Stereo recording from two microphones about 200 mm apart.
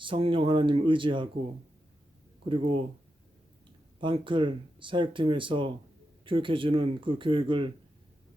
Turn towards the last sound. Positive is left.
turn(degrees=-25)  # may be behind; listen again after turning